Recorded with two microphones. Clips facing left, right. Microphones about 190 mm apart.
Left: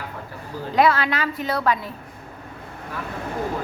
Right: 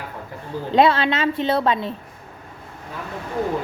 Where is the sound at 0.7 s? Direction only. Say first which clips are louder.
Right 2 dB; 25° right (ahead or behind).